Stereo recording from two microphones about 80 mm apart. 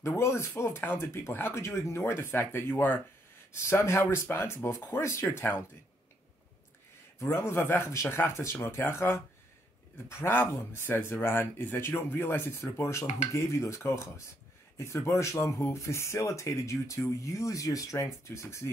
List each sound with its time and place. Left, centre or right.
0.0 s speech: left
3.5 s speech: left
7.2 s speech: left